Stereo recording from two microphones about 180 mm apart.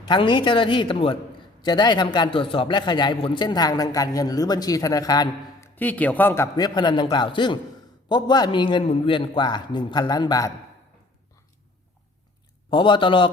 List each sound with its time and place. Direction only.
0.1 s a man's voice: 25° left (ahead or behind)
5.7 s a man's voice: 10° left (ahead or behind)
12.7 s a man's voice: 25° left (ahead or behind)